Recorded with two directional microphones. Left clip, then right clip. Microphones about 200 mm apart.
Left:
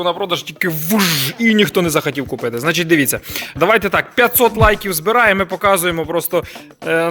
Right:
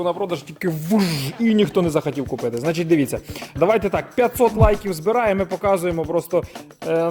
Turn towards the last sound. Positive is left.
turn(degrees=0)  # may be behind; listen again after turning